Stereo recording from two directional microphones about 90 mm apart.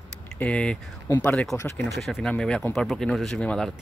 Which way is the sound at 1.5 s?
25° left (ahead or behind).